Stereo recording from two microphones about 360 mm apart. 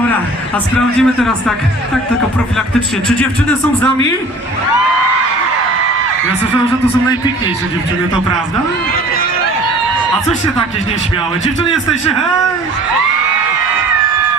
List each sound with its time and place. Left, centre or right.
0.5 s a man's voice: centre
11.4 s a man's voice: centre